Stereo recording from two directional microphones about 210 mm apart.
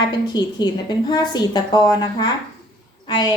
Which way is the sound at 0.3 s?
20° left (ahead or behind).